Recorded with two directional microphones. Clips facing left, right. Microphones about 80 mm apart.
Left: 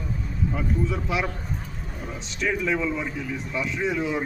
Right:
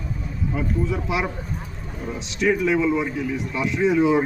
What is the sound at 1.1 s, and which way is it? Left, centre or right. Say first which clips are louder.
Speech: right 2 dB; centre.